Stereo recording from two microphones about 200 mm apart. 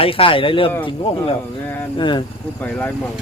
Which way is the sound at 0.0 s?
25° left (ahead or behind).